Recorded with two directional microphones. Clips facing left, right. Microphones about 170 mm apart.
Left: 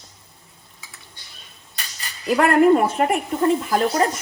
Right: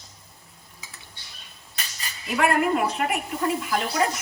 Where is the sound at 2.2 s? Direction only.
40° left (ahead or behind).